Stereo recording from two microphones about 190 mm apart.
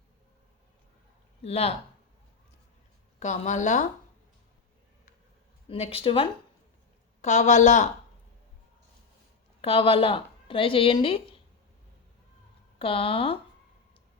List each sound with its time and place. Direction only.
1.5 s a woman's voice: 30° left (ahead or behind)
3.2 s a woman's voice: 40° left (ahead or behind)
5.6 s a woman's voice: 30° left (ahead or behind)
9.6 s a woman's voice: 30° left (ahead or behind)
12.8 s a woman's voice: 30° left (ahead or behind)